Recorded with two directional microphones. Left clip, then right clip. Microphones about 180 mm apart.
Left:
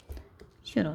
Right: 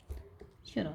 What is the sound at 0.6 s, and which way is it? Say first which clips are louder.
Speech: left 7 dB; 45° left (ahead or behind).